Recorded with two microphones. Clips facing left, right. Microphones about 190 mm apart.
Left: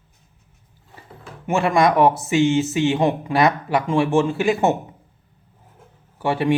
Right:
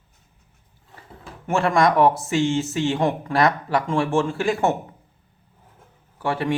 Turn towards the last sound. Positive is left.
turn(degrees=25)  # may be behind; listen again after turning